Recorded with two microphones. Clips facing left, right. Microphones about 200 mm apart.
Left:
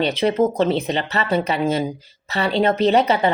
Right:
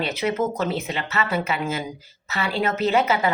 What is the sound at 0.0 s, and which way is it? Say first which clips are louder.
Speech: left 6 dB; 30° left (ahead or behind).